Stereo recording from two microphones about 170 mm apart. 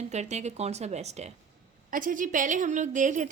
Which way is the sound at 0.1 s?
40° right (ahead or behind).